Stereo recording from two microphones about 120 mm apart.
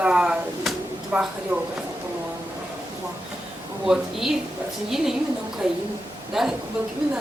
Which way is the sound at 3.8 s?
5° right (ahead or behind).